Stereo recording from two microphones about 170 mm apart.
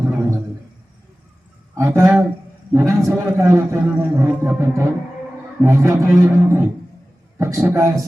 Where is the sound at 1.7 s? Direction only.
15° right (ahead or behind).